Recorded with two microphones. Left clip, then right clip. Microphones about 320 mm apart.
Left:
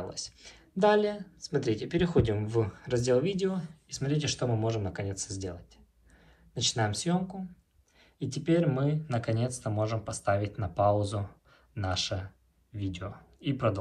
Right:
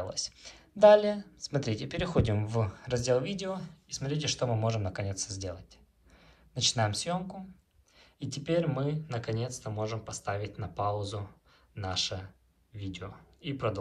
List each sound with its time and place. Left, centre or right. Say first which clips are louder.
0.0 s speech: right 3 dB; right; by 13.7 s centre